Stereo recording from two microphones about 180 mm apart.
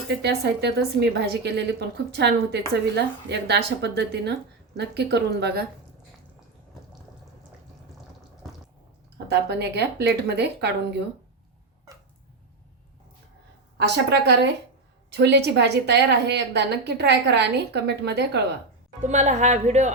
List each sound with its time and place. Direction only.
0.1 s a woman's voice: 70° right (ahead or behind)
9.1 s a woman's voice: 65° right (ahead or behind)
13.7 s a woman's voice: 70° right (ahead or behind)
19.0 s speech: 40° right (ahead or behind)